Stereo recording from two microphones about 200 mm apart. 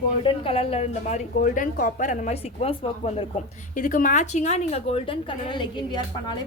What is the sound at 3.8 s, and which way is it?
A woman's voice, 40° left (ahead or behind).